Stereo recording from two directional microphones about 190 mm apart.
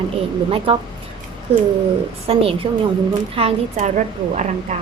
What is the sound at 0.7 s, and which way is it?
Speech, 30° right (ahead or behind).